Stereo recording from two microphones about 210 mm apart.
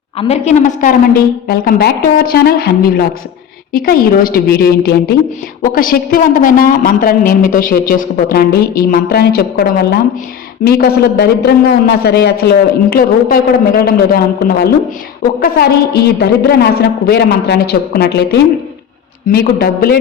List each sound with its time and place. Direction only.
0.2 s a woman's voice: 30° left (ahead or behind); by 16.0 s 45° left (ahead or behind)
17.1 s a woman's voice: 50° left (ahead or behind)